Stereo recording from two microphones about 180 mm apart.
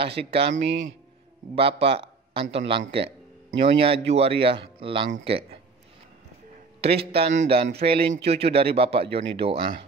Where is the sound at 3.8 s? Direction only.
35° right (ahead or behind).